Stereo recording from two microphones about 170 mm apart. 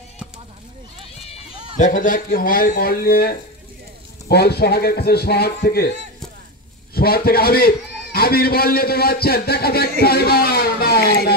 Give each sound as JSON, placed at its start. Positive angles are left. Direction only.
{"t": 1.2, "sound": "run", "side_deg": 35}
{"t": 1.9, "sound": "a man's voice", "side_deg": 50}
{"t": 6.9, "sound": "a man's voice", "side_deg": 65}